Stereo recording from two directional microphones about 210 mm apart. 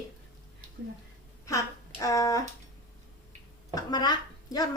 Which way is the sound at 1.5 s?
15° left (ahead or behind).